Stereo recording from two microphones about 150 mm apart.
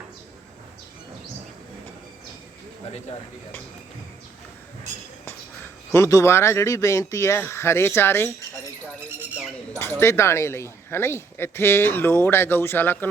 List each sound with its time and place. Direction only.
5.9 s speech: 20° left (ahead or behind)
9.7 s speech: 15° left (ahead or behind)